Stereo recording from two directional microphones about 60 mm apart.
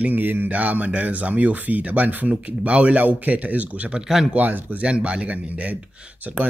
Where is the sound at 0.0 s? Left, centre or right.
Right.